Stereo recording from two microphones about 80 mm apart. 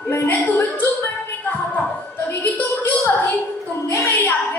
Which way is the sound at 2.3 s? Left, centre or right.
Left.